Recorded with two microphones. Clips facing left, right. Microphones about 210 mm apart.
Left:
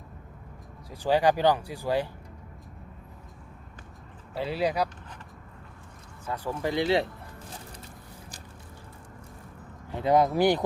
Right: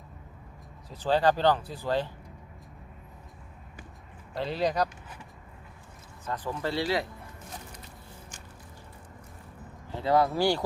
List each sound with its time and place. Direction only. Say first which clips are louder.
0.9 s speech: left 1 dB; 10° left (ahead or behind)
4.4 s speech: left 1 dB; 10° left (ahead or behind)
6.2 s speech: left 2 dB; 10° left (ahead or behind)
9.9 s speech: left 2 dB; 20° left (ahead or behind)